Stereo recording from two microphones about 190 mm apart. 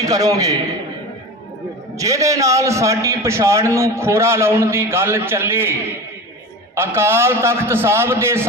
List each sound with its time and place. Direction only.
0.0 s a man's voice: 20° right (ahead or behind)
2.0 s a man's voice: 15° right (ahead or behind)